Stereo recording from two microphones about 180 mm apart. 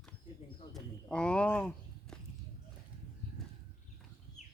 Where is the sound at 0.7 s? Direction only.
5° left (ahead or behind).